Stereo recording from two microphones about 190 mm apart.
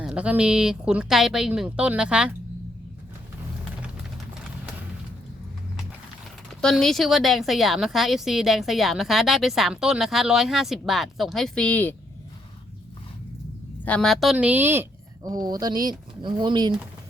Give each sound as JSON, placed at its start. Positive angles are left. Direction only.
{"t": 0.0, "sound": "a woman's voice", "side_deg": -5}
{"t": 6.6, "sound": "a woman's voice", "side_deg": 0}
{"t": 13.8, "sound": "speech", "side_deg": 5}